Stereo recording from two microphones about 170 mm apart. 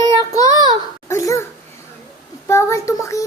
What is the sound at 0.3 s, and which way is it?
Child singing, 20° left (ahead or behind).